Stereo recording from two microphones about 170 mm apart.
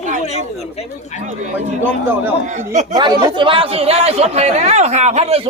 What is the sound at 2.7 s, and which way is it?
Speech, 45° right (ahead or behind).